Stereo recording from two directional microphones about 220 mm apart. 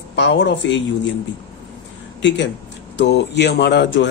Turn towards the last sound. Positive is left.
turn(degrees=50)  # may be behind; listen again after turning